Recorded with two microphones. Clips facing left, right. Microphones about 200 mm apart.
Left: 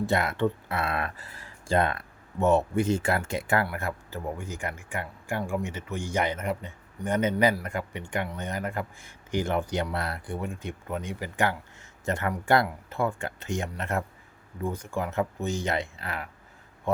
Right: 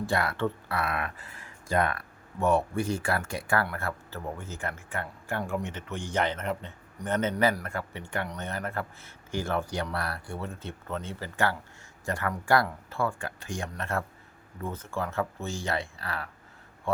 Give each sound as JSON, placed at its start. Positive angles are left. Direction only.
{"t": 0.0, "sound": "speech", "side_deg": 20}